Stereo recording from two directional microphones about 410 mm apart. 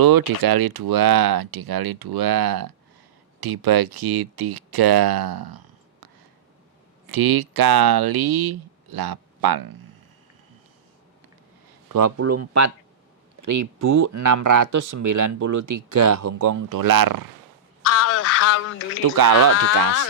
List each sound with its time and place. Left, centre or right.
0.0 s speech: right
7.1 s speech: right
11.9 s speech: right
17.8 s a sound: left
19.1 s speech: right